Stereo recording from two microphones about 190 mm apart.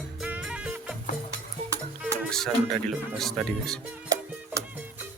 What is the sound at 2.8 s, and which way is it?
Speech, centre (ahead or behind).